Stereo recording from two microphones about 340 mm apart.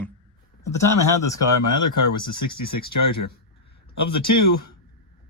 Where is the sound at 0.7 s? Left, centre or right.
Left.